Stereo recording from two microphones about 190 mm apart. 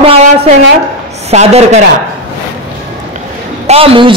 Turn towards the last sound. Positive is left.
turn(degrees=-30)  # may be behind; listen again after turning